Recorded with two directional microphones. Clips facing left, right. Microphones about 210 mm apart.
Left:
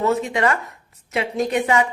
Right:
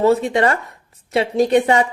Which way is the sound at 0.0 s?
30° right (ahead or behind).